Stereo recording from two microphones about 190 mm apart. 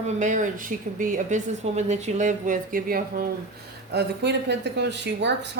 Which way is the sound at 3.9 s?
60° right (ahead or behind).